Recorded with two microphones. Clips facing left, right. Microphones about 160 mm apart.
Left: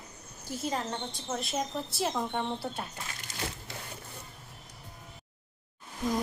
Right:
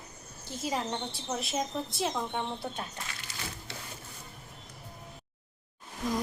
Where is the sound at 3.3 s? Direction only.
45° left (ahead or behind).